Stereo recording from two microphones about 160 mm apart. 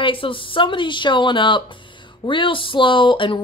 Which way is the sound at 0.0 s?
35° left (ahead or behind).